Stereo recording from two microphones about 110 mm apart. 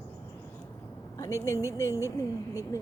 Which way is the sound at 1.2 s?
30° left (ahead or behind).